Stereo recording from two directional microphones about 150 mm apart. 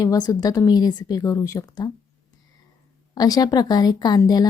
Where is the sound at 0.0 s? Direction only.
25° left (ahead or behind).